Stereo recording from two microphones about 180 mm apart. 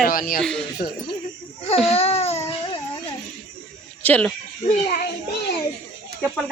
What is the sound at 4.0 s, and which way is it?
Speech, 10° left (ahead or behind).